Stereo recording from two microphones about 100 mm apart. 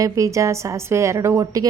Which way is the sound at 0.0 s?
30° right (ahead or behind).